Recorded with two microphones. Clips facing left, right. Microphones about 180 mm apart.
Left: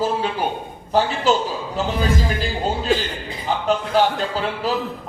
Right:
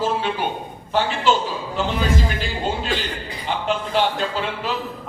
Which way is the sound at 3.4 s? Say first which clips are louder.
Left 3 dB; 40° left (ahead or behind).